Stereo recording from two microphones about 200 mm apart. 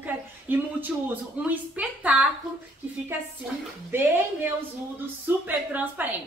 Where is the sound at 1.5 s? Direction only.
5° right (ahead or behind).